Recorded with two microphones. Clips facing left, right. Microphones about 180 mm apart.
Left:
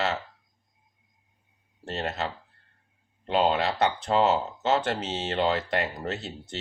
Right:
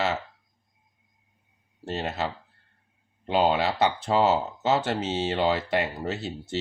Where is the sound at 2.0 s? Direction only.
10° right (ahead or behind).